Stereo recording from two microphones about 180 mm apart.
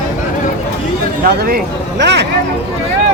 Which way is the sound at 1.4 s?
60° right (ahead or behind).